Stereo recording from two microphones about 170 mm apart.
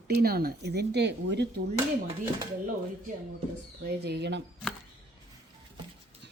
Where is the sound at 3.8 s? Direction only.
75° right (ahead or behind).